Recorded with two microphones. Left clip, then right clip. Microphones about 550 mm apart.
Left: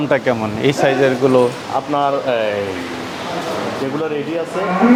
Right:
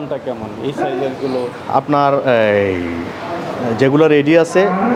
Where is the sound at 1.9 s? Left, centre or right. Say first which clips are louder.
Right 3 dB; right.